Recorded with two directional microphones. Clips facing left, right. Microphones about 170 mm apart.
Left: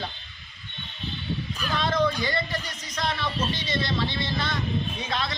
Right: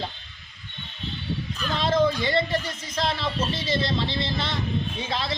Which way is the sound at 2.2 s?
25° right (ahead or behind).